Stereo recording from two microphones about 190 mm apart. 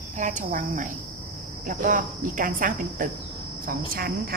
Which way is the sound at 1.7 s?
45° right (ahead or behind).